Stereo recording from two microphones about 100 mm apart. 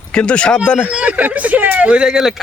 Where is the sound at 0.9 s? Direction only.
15° right (ahead or behind).